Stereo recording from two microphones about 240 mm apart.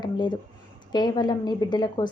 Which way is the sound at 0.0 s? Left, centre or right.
Centre.